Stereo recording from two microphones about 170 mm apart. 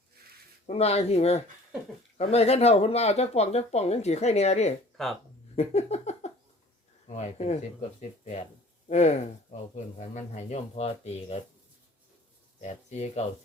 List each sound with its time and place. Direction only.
0.7 s speech: 40° left (ahead or behind)
5.0 s speech: 5° left (ahead or behind)
5.5 s a sound: 40° left (ahead or behind)
7.1 s speech: 40° left (ahead or behind)
12.5 s speech: 45° left (ahead or behind)